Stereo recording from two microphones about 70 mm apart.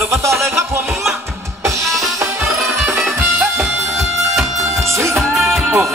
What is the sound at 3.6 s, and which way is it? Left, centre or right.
Music, right.